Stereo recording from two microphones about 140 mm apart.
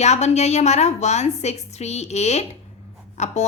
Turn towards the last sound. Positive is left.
turn(degrees=55)  # may be behind; listen again after turning